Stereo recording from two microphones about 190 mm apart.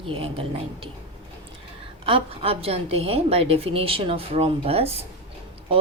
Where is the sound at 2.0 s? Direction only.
30° right (ahead or behind).